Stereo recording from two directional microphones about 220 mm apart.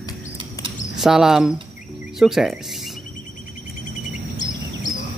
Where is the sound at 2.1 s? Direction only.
Centre (ahead or behind).